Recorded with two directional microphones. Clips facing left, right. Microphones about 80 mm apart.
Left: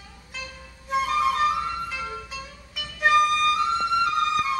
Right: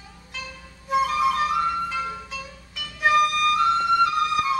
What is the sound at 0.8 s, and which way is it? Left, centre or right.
Music, centre.